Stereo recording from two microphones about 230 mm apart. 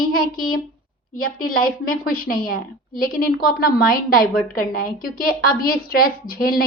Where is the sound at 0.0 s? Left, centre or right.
Left.